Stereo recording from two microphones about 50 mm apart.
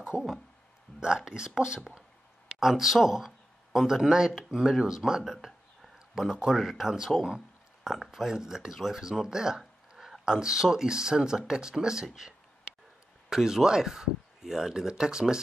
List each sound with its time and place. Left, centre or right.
0.1 s a sound: left
0.9 s speech: centre
2.6 s speech: centre
13.3 s speech: centre